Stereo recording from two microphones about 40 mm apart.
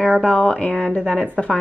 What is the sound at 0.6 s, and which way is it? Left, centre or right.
Speech, left.